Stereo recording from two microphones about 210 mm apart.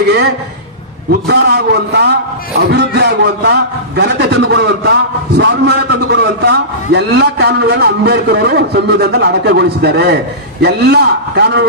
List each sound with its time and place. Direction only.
1.3 s a man's voice: 50° right (ahead or behind)